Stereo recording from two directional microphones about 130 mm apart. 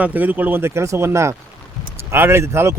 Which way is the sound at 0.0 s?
15° right (ahead or behind).